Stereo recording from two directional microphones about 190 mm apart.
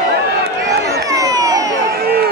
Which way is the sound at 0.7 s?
20° right (ahead or behind).